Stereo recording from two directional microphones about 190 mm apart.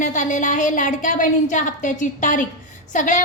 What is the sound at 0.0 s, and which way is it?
A woman's voice, 40° left (ahead or behind).